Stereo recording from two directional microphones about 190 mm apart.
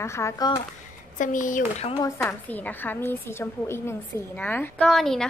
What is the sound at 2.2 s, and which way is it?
A woman's voice, 10° left (ahead or behind).